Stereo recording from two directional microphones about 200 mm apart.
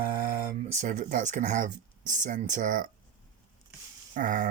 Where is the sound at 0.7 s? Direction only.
40° right (ahead or behind).